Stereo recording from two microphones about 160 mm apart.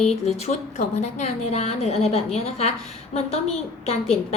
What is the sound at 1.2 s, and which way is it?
A woman's voice, 40° left (ahead or behind).